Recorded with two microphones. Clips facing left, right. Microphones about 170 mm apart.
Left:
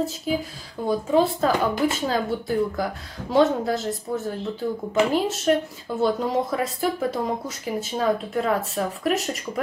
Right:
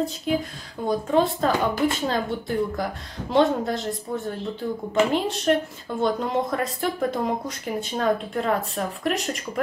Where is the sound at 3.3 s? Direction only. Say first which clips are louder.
Left 1 dB; 5° left (ahead or behind).